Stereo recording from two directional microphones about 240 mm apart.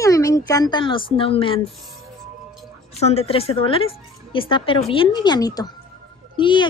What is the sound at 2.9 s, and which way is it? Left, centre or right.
A woman's voice, left.